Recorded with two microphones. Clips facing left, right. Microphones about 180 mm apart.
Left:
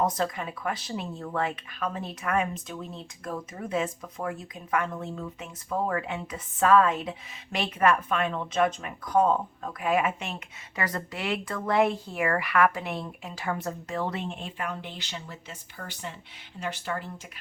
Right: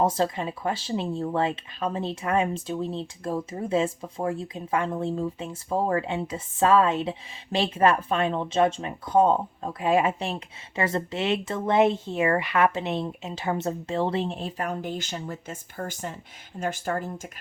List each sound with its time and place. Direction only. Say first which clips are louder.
0.0 s speech: right 4 dB; 30° right (ahead or behind); by 17.1 s 45° right (ahead or behind)